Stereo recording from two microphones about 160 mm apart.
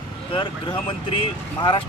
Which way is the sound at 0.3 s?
30° left (ahead or behind).